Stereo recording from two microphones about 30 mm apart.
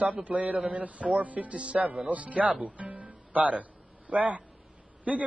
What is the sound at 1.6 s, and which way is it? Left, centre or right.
Speech, right.